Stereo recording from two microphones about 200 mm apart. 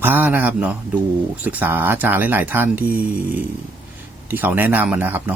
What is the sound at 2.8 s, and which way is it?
Speech, 45° right (ahead or behind).